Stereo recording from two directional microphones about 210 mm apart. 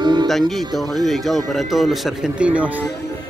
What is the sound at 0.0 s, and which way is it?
Music, 20° right (ahead or behind).